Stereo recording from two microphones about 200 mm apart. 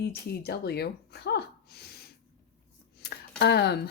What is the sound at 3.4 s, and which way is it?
Speech, 55° left (ahead or behind).